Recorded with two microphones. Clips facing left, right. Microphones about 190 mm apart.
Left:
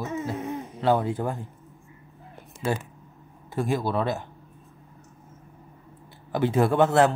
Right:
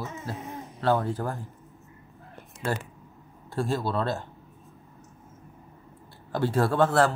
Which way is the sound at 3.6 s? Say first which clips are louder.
Left 2 dB; 15° left (ahead or behind).